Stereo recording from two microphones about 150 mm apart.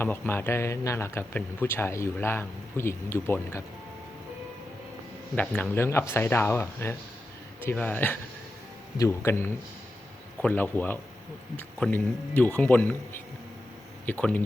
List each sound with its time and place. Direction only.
0.0 s a man's voice: 15° left (ahead or behind)
5.3 s a man's voice: 10° left (ahead or behind)
14.1 s a man's voice: 10° left (ahead or behind)